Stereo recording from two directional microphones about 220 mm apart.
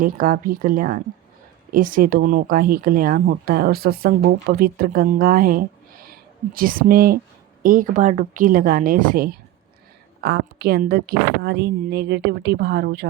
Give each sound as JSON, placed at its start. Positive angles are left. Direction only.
{"t": 0.0, "sound": "a woman's voice", "side_deg": -40}